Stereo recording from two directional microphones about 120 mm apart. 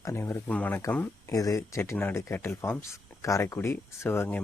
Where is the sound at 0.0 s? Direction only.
20° left (ahead or behind).